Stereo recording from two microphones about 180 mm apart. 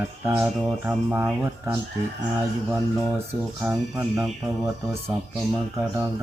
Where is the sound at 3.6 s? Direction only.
15° right (ahead or behind).